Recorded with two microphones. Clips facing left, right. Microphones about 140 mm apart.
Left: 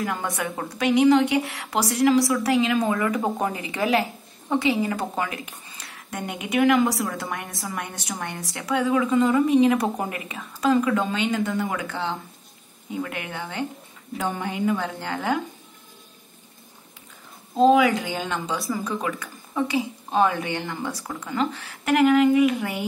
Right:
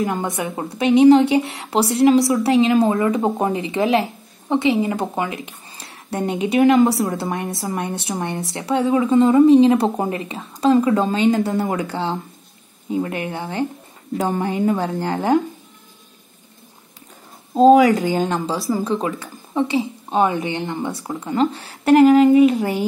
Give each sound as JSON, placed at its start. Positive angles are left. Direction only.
{"t": 0.0, "sound": "a woman's voice", "side_deg": -20}
{"t": 17.6, "sound": "a woman's voice", "side_deg": -40}
{"t": 18.6, "sound": "a woman's voice", "side_deg": -25}